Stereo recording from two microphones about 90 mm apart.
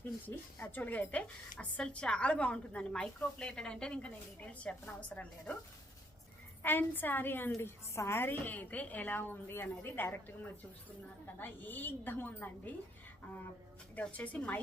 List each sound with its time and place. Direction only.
0.3 s a woman's voice: 20° left (ahead or behind)
6.6 s a woman's voice: 20° left (ahead or behind)
11.3 s a woman's voice: 20° left (ahead or behind)
13.9 s a woman's voice: 15° left (ahead or behind)